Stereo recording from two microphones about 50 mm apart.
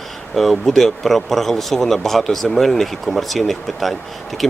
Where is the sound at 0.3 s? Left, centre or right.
Centre.